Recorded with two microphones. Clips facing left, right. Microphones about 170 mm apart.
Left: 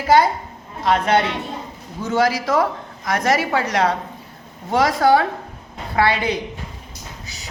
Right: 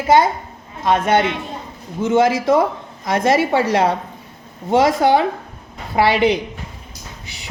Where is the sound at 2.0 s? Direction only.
20° right (ahead or behind).